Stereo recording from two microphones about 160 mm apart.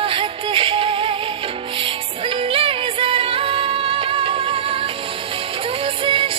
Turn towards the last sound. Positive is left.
turn(degrees=-35)  # may be behind; listen again after turning